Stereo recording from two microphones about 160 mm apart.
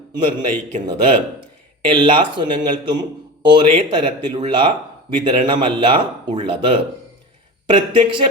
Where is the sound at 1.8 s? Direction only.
30° right (ahead or behind).